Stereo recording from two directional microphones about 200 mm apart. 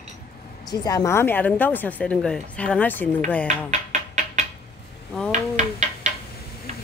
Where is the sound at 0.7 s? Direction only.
15° left (ahead or behind).